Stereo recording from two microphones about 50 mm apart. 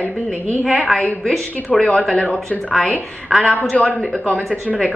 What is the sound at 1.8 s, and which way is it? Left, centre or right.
A woman's voice, centre.